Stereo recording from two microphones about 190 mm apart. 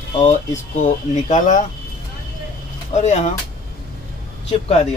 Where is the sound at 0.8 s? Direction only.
40° left (ahead or behind).